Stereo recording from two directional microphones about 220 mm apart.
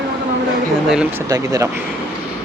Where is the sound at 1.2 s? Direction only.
15° right (ahead or behind).